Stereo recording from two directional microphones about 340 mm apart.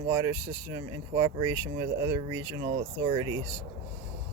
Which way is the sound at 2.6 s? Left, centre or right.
Right.